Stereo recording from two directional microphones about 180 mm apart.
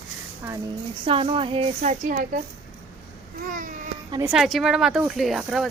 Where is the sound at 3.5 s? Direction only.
45° right (ahead or behind).